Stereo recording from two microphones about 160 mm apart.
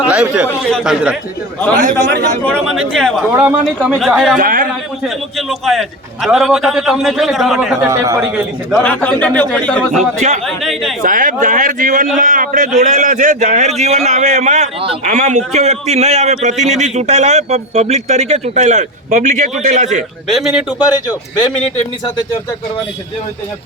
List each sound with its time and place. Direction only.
0.1 s a man's voice: 5° right (ahead or behind)
2.7 s a man's voice: centre (ahead or behind)
3.3 s a man's voice: 10° right (ahead or behind)
4.4 s a man's voice: 60° right (ahead or behind)
5.0 s a man's voice: centre (ahead or behind)
7.8 s a man's voice: 15° right (ahead or behind)
8.7 s a man's voice: 10° left (ahead or behind)
11.0 s a man's voice: 55° right (ahead or behind)
20.2 s a man's voice: centre (ahead or behind)